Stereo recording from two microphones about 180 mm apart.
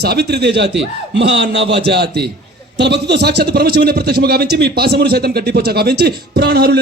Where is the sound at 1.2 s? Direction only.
70° right (ahead or behind).